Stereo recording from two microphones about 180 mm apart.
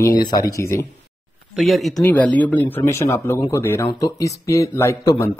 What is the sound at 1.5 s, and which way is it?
Speech, centre (ahead or behind).